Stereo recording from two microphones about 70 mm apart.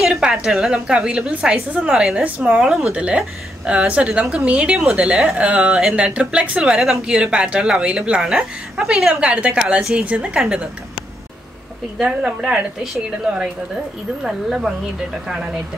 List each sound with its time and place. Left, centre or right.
0.0 s a woman's voice: centre
12.0 s a woman's voice: centre